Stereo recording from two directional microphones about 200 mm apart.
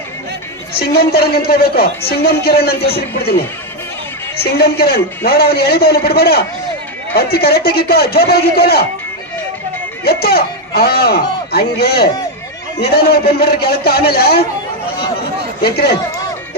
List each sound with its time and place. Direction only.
0.8 s a woman's voice: 50° left (ahead or behind)
4.5 s a woman's voice: 50° left (ahead or behind)
10.0 s a woman's voice: 50° left (ahead or behind)
15.6 s a woman's voice: 50° left (ahead or behind)